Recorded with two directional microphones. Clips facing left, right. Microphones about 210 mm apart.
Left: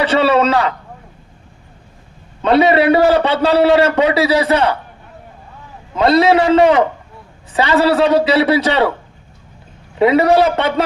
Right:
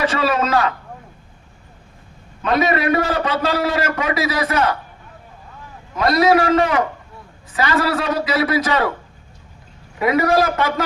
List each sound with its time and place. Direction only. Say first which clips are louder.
0.0 s a man's voice: left 6 dB; 30° left (ahead or behind)
2.4 s a man's voice: left 6 dB; 30° left (ahead or behind)
6.0 s a man's voice: left 4 dB; 30° left (ahead or behind)
10.0 s a man's voice: left 5 dB; 30° left (ahead or behind)